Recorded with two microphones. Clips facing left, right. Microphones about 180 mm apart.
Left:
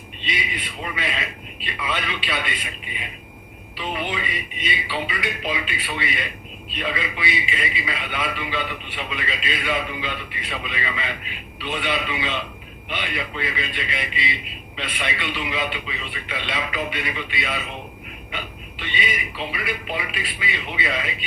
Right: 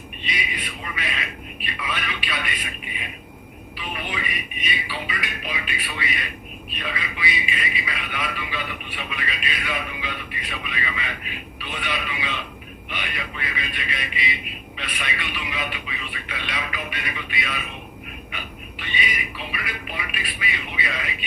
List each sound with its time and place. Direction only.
0.3 s a man's voice: 25° left (ahead or behind)
3.9 s a man's voice: 25° left (ahead or behind)
18.8 s a man's voice: 25° left (ahead or behind)